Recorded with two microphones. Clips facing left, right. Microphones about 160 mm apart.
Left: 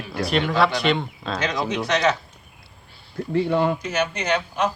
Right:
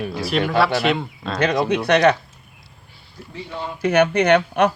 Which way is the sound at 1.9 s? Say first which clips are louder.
Right 6 dB; 60° right (ahead or behind).